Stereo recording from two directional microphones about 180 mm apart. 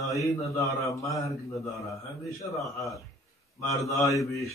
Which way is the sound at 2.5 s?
15° left (ahead or behind).